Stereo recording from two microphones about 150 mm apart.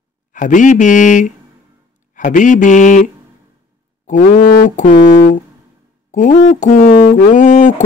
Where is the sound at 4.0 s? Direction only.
55° left (ahead or behind).